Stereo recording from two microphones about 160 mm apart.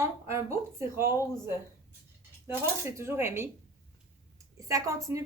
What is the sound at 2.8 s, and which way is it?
Speech, 15° right (ahead or behind).